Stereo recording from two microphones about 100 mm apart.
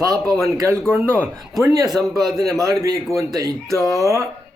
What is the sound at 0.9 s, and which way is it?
Speech, 20° right (ahead or behind).